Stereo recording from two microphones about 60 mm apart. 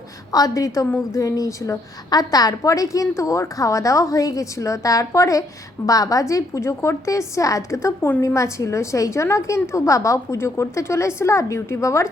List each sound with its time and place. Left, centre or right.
0.3 s a woman's voice: left